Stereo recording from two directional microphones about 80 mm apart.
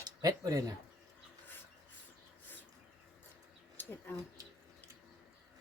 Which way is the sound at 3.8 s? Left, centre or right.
Left.